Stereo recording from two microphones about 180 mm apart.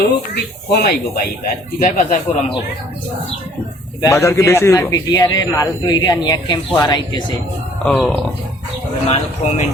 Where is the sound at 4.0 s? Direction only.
15° left (ahead or behind).